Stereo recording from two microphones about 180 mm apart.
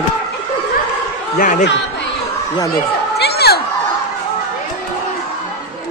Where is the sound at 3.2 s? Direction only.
65° left (ahead or behind).